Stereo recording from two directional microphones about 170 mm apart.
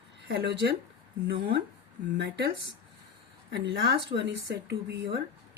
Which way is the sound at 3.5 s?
85° right.